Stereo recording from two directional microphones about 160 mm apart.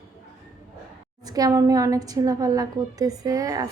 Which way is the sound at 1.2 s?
25° right (ahead or behind).